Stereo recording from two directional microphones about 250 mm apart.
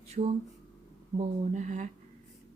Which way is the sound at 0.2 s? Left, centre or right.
Right.